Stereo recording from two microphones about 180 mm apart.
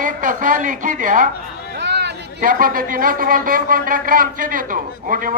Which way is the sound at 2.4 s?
50° right (ahead or behind).